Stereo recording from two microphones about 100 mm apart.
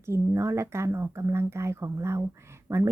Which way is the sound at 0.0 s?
30° right (ahead or behind).